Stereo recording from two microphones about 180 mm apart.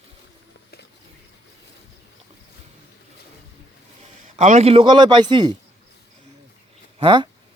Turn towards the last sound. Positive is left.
turn(degrees=-25)  # may be behind; listen again after turning